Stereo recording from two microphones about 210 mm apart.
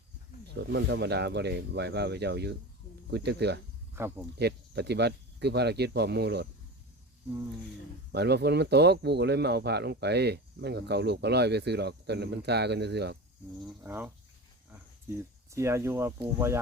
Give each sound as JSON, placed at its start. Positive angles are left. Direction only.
{"t": 0.6, "sound": "speech", "side_deg": -60}
{"t": 3.9, "sound": "speech", "side_deg": -10}
{"t": 4.4, "sound": "speech", "side_deg": -50}
{"t": 8.1, "sound": "speech", "side_deg": -50}
{"t": 13.6, "sound": "speech", "side_deg": -5}
{"t": 15.4, "sound": "speech", "side_deg": -15}